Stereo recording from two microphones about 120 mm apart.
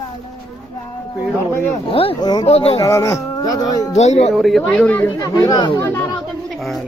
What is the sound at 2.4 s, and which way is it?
Speech, 55° left (ahead or behind).